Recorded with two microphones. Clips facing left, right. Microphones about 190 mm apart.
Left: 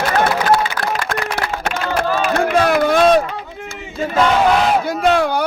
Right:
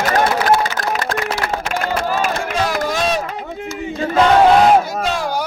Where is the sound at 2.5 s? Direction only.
60° left (ahead or behind).